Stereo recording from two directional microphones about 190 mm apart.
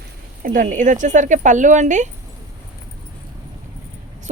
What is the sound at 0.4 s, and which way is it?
A woman's voice, 45° right (ahead or behind).